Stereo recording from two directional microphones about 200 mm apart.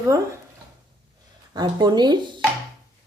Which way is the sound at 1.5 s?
20° right (ahead or behind).